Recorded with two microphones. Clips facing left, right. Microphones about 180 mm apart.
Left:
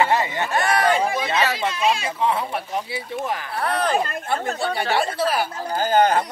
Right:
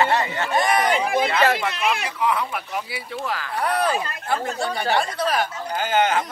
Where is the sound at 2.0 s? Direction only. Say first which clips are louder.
Left 1 dB; 25° left (ahead or behind).